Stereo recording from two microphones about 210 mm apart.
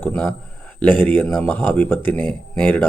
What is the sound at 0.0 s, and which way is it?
Speech, 10° left (ahead or behind).